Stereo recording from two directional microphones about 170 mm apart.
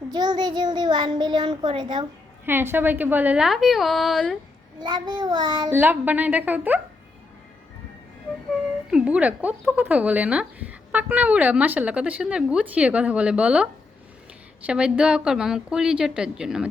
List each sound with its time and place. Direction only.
0.1 s a child's voice: 25° right (ahead or behind)
2.5 s a woman's voice: 10° right (ahead or behind)
4.8 s a child's voice: 25° right (ahead or behind)
5.7 s speech: 10° right (ahead or behind)
8.9 s speech: 5° right (ahead or behind)
14.7 s a woman's voice: 5° right (ahead or behind)